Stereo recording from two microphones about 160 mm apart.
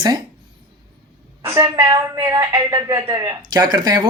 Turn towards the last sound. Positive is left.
turn(degrees=-25)  # may be behind; listen again after turning